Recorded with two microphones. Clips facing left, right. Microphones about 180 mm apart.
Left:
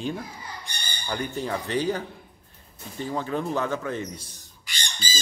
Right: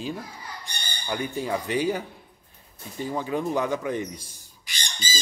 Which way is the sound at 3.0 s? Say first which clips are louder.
Right 1 dB; 10° right (ahead or behind).